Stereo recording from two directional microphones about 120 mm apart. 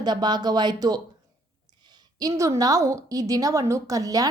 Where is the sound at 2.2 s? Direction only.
30° right (ahead or behind).